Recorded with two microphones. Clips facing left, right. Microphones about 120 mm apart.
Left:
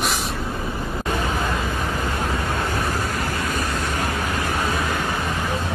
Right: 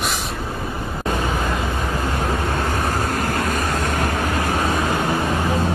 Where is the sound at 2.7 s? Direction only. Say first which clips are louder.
Right 3 dB; 45° right (ahead or behind).